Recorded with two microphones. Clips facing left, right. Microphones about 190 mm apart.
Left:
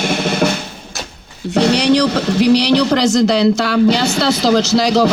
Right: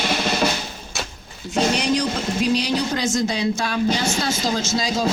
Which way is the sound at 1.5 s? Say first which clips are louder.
Left 8 dB; 70° left (ahead or behind).